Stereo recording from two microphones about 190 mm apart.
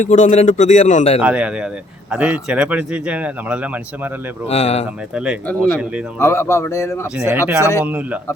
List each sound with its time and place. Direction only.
0.0 s speech: 40° left (ahead or behind)
1.2 s speech: 5° right (ahead or behind)
4.4 s speech: 35° left (ahead or behind)
5.1 s speech: 5° right (ahead or behind)
6.1 s speech: 15° left (ahead or behind)
7.2 s speech: 10° right (ahead or behind)